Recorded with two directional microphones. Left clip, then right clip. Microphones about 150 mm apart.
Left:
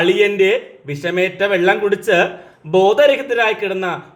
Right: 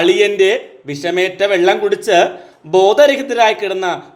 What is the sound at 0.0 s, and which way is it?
A man's voice, 35° right (ahead or behind).